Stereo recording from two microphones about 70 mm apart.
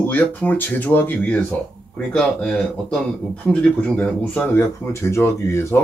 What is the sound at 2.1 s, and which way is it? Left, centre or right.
Speech, centre.